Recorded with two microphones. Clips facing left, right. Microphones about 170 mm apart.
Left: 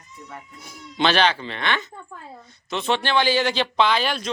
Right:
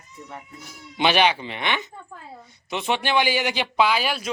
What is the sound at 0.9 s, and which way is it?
Speech, 15° right (ahead or behind).